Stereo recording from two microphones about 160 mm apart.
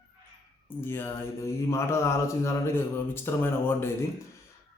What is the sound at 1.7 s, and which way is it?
Speech, 15° left (ahead or behind).